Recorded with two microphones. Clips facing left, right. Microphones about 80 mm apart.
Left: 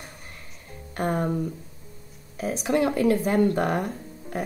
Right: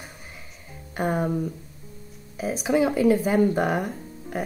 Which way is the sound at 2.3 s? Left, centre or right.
Centre.